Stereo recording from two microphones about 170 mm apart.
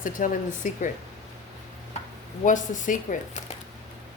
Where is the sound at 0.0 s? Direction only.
50° left (ahead or behind).